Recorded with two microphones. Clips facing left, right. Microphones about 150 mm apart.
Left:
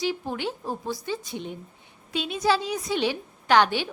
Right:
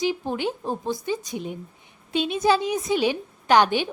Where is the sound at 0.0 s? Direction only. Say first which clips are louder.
Right 3 dB; 15° right (ahead or behind).